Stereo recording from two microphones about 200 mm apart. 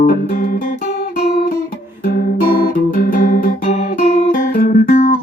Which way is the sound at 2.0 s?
45° left (ahead or behind).